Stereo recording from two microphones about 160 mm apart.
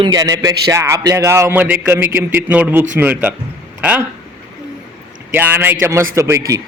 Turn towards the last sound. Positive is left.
turn(degrees=-20)  # may be behind; listen again after turning